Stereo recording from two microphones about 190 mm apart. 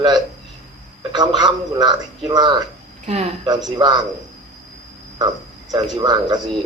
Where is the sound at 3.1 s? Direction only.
35° right (ahead or behind).